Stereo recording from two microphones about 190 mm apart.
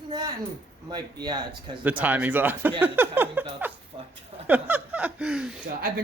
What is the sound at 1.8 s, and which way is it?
Speech, 10° right (ahead or behind).